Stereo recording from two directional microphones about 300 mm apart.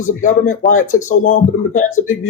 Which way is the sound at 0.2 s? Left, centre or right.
Left.